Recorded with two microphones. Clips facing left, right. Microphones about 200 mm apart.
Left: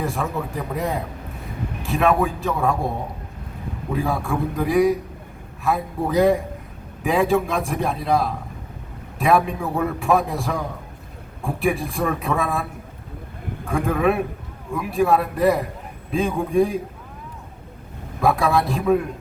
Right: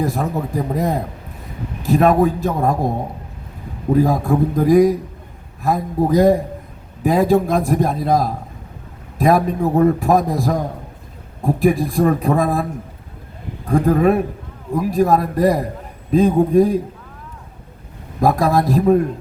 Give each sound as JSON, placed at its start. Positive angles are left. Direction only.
{"t": 0.0, "sound": "a man's voice", "side_deg": -40}
{"t": 13.7, "sound": "a man's voice", "side_deg": -40}
{"t": 18.2, "sound": "a man's voice", "side_deg": -40}